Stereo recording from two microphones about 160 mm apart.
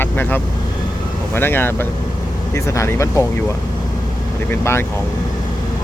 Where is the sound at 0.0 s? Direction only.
10° left (ahead or behind).